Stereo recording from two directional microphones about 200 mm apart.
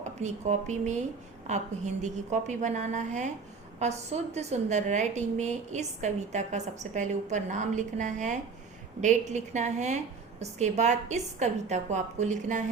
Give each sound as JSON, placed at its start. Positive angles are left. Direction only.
{"t": 0.0, "sound": "a woman's voice", "side_deg": -35}